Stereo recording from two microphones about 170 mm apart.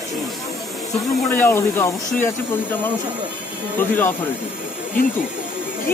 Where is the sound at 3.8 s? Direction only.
10° left (ahead or behind).